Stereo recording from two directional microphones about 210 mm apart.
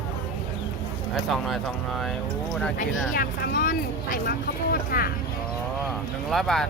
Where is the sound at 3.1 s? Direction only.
45° left (ahead or behind).